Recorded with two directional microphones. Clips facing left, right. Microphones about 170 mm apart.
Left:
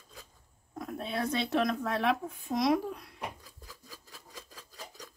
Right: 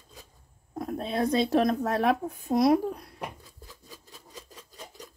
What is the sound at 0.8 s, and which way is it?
Speech, 35° right (ahead or behind).